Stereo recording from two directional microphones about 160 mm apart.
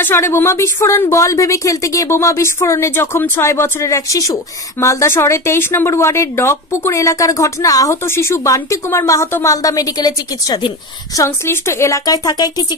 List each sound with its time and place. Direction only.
0.0 s a woman's voice: 15° left (ahead or behind)